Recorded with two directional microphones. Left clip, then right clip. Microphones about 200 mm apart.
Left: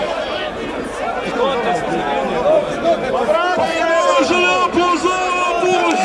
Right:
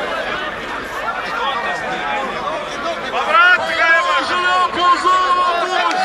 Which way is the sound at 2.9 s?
30° left (ahead or behind).